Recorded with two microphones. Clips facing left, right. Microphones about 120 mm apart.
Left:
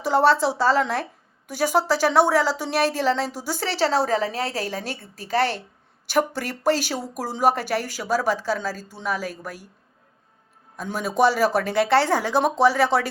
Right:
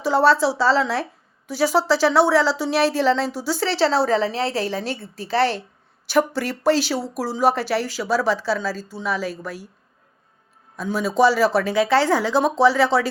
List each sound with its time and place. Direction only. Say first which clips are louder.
0.0 s a woman's voice: right 2 dB; 50° left (ahead or behind)
10.8 s a woman's voice: right 3 dB; 50° left (ahead or behind)